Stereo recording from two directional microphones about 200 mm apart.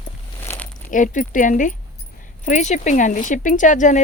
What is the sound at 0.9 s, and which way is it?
Speech, 40° left (ahead or behind).